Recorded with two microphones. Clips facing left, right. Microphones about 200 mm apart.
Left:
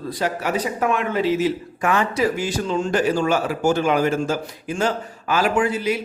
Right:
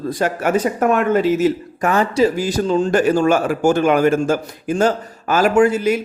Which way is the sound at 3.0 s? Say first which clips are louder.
Right 5 dB; 50° right (ahead or behind).